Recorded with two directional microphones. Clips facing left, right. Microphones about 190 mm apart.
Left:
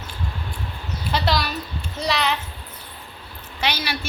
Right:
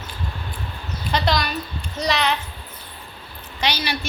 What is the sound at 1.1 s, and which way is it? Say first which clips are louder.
A woman's voice: right 1 dB; 5° left (ahead or behind).